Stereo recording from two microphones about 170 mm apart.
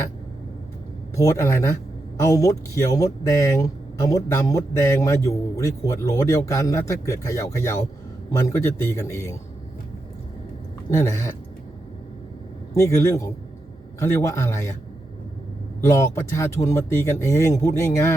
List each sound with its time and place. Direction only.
1.1 s speech: 15° left (ahead or behind)
10.8 s speech: 20° left (ahead or behind)
12.7 s speech: 15° left (ahead or behind)
15.8 s speech: 15° left (ahead or behind)